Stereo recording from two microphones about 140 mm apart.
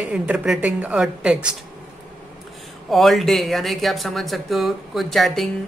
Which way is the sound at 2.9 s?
Centre (ahead or behind).